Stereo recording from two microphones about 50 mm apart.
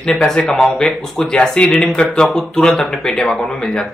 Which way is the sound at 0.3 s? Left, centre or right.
Centre.